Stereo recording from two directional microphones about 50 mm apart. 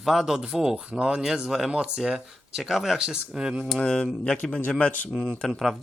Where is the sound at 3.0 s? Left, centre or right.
Centre.